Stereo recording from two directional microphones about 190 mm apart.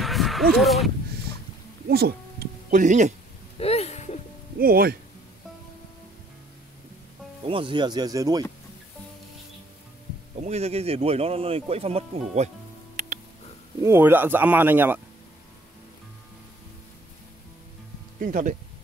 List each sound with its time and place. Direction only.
0.0 s a sound: centre (ahead or behind)
0.6 s speech: centre (ahead or behind)
1.9 s speech: 55° right (ahead or behind)
2.7 s speech: 40° right (ahead or behind)
3.5 s a sound: 35° left (ahead or behind)
4.6 s speech: 50° right (ahead or behind)
7.4 s speech: 25° right (ahead or behind)
10.4 s speech: 35° right (ahead or behind)
13.0 s music: 45° right (ahead or behind)
13.8 s speech: 10° right (ahead or behind)
18.2 s speech: 45° right (ahead or behind)